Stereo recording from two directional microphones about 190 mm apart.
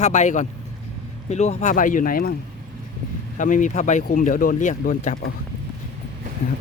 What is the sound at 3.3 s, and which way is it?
Speech, 40° left (ahead or behind).